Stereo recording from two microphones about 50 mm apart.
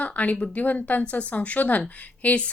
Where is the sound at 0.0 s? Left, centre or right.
Left.